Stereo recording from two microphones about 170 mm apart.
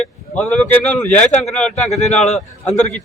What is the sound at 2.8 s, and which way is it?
Speech, 45° left (ahead or behind).